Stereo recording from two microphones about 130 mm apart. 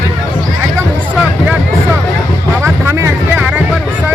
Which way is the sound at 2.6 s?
20° right (ahead or behind).